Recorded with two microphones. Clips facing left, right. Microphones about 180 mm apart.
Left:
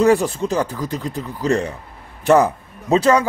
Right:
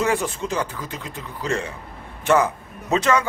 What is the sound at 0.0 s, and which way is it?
Speech, 35° left (ahead or behind).